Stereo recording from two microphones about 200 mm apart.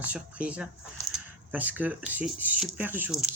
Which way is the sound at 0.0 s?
5° right (ahead or behind).